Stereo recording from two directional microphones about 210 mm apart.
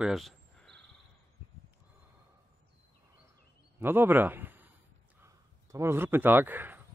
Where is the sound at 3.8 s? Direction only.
10° right (ahead or behind).